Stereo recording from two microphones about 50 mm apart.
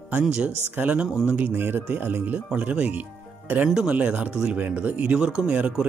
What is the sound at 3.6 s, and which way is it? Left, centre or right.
Speech, centre.